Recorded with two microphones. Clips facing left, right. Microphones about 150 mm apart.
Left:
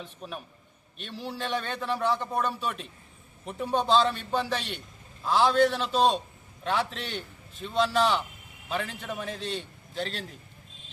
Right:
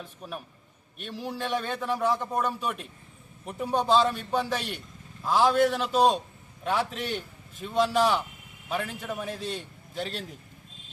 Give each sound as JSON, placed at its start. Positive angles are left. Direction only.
{"t": 0.0, "sound": "a man's voice", "side_deg": -5}